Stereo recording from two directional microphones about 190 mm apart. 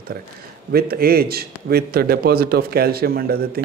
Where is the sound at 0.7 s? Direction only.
55° right (ahead or behind).